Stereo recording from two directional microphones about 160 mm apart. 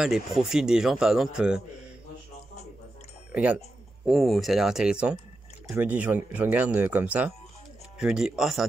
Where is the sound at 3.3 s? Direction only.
10° right (ahead or behind).